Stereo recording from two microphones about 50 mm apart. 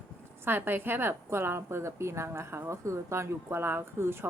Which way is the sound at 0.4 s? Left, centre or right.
Right.